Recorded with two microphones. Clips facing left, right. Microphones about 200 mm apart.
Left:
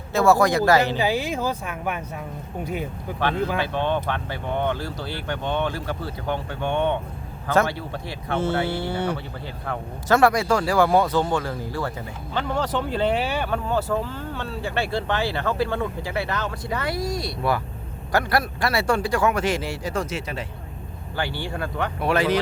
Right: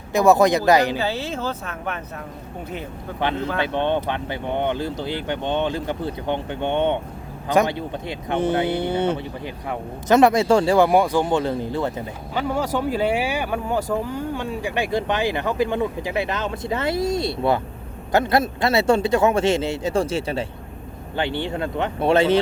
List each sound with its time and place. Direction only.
0.1 s speech: 20° right (ahead or behind)
0.9 s speech: 15° left (ahead or behind)
3.3 s speech: 10° left (ahead or behind)
3.6 s speech: 20° right (ahead or behind)
12.3 s speech: 10° right (ahead or behind); by 22.4 s 25° right (ahead or behind)